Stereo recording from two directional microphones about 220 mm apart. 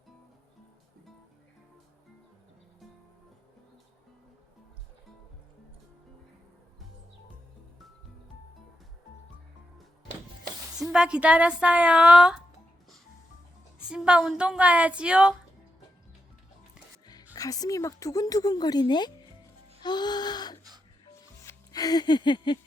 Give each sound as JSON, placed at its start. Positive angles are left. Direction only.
{"t": 10.8, "sound": "a woman's voice", "side_deg": -5}
{"t": 13.8, "sound": "a woman's voice", "side_deg": -5}
{"t": 17.3, "sound": "speech", "side_deg": 15}
{"t": 19.8, "sound": "a sound", "side_deg": 20}
{"t": 21.4, "sound": "music", "side_deg": 15}